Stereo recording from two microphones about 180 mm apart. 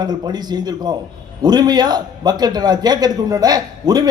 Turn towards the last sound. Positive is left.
turn(degrees=-20)  # may be behind; listen again after turning